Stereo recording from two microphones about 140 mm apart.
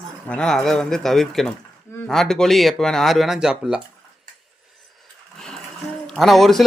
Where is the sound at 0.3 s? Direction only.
5° left (ahead or behind).